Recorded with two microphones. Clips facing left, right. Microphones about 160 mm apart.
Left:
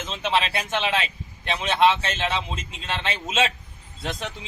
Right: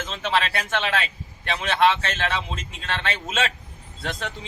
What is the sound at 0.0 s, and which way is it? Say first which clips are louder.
A man's voice: even; 20° left (ahead or behind).